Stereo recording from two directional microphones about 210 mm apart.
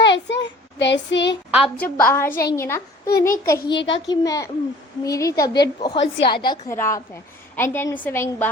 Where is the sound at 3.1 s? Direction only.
45° left (ahead or behind).